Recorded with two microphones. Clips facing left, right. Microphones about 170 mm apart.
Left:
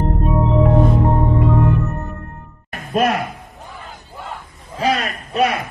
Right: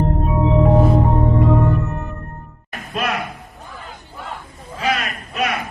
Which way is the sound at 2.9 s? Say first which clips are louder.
Left 6 dB; 45° left (ahead or behind).